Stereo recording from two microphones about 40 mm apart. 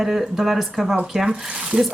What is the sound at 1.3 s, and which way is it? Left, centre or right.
Speech, centre.